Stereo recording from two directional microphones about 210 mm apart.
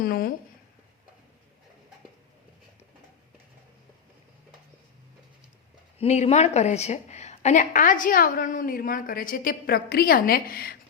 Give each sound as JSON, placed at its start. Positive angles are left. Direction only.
{"t": 0.0, "sound": "speech", "side_deg": 45}
{"t": 6.0, "sound": "speech", "side_deg": 30}